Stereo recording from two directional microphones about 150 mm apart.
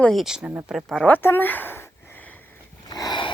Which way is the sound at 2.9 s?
25° left (ahead or behind).